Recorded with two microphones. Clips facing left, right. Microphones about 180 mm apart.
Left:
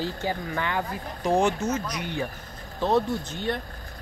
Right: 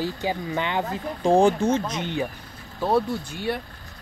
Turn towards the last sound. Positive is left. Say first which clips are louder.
# right 1 dB
turn(degrees=-10)  # may be behind; listen again after turning